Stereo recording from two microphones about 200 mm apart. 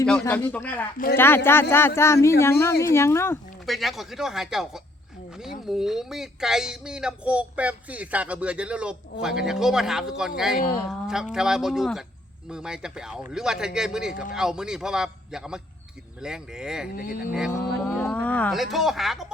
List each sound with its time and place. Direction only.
0.0 s speech: 5° left (ahead or behind)
3.7 s speech: centre (ahead or behind)
16.9 s speech: 45° left (ahead or behind)
17.5 s speech: 5° left (ahead or behind)